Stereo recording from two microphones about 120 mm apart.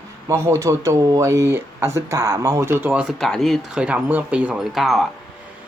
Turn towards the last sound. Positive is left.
turn(degrees=-5)  # may be behind; listen again after turning